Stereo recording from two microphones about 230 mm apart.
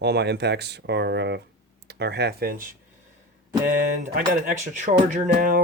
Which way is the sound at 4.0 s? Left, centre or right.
Right.